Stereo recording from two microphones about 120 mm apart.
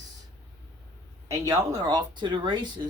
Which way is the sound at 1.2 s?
25° right (ahead or behind).